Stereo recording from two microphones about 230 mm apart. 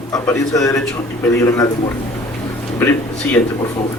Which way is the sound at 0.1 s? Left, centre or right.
Centre.